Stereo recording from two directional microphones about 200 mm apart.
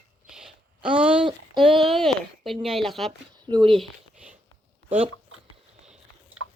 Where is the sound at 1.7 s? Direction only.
Centre (ahead or behind).